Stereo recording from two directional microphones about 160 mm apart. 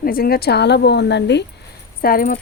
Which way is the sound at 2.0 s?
65° left (ahead or behind).